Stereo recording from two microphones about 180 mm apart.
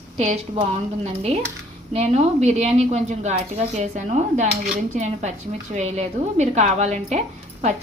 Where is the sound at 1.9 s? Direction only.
35° right (ahead or behind).